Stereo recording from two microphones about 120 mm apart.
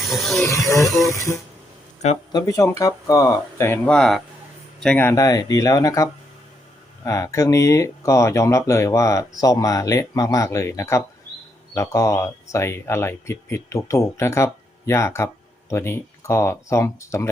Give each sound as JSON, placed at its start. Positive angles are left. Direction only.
{"t": 0.0, "sound": "speech", "side_deg": 0}
{"t": 0.4, "sound": "speech", "side_deg": 25}
{"t": 0.9, "sound": "speech", "side_deg": 0}
{"t": 1.1, "sound": "speech", "side_deg": 25}
{"t": 3.8, "sound": "speech", "side_deg": 5}
{"t": 4.9, "sound": "speech", "side_deg": 20}
{"t": 5.2, "sound": "speech", "side_deg": 30}